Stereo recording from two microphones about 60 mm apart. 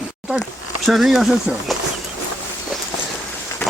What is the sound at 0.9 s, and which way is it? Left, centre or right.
Speech, centre.